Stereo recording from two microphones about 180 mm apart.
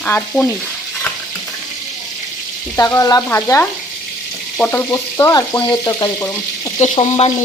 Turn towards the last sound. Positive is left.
turn(degrees=35)  # may be behind; listen again after turning